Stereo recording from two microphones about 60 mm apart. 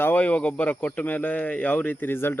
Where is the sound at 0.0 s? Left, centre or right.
Left.